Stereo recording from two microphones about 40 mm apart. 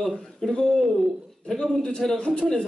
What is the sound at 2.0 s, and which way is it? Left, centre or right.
Speech, centre.